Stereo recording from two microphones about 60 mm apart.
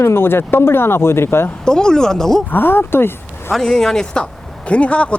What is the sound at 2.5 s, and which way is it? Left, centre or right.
Speech, left.